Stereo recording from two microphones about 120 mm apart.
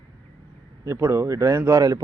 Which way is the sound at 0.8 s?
25° right (ahead or behind).